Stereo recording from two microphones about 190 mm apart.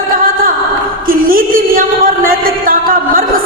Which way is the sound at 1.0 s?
50° right (ahead or behind).